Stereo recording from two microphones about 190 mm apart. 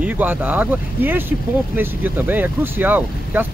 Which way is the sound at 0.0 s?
10° right (ahead or behind).